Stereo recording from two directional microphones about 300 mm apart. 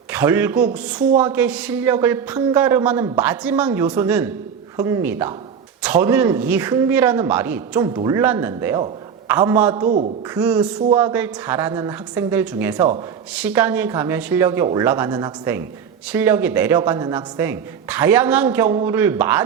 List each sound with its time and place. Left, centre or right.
0.1 s speech: centre
9.8 s a man's voice: right
10.3 s speech: centre